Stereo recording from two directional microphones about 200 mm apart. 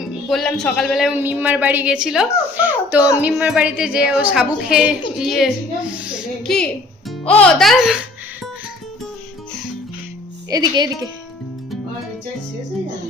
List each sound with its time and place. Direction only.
0.3 s a woman's voice: centre (ahead or behind)
5.9 s a sound: centre (ahead or behind)
7.3 s a woman's voice: 5° left (ahead or behind)
10.5 s speech: 20° right (ahead or behind)